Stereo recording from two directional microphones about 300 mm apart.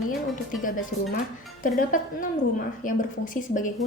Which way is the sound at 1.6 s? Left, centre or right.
Left.